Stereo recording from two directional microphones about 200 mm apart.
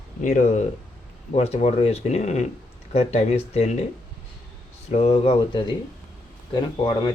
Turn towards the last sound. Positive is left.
turn(degrees=25)  # may be behind; listen again after turning